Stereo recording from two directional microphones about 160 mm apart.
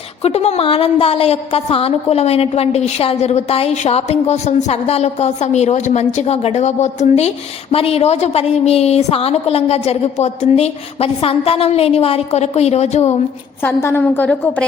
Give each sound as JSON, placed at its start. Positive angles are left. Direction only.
{"t": 0.2, "sound": "a woman's voice", "side_deg": 40}
{"t": 13.6, "sound": "a woman's voice", "side_deg": 15}